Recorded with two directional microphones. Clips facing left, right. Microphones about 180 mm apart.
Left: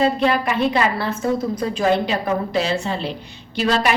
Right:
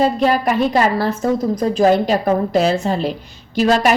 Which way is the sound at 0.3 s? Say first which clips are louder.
Right 3 dB; 45° right (ahead or behind).